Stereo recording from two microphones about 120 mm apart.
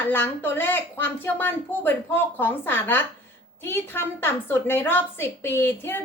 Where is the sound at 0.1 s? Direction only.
15° left (ahead or behind).